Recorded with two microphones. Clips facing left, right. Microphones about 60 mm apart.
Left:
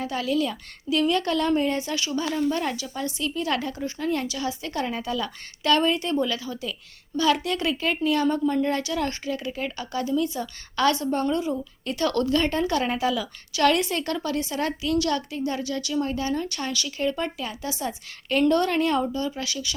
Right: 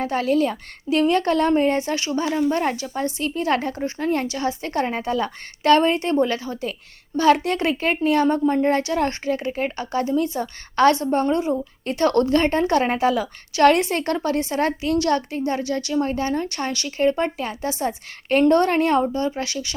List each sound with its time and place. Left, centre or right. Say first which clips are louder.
0.0 s a woman's voice: right 5 dB; right
2.2 s a woman's voice: right 5 dB; centre
2.5 s a woman's voice: right 4 dB; right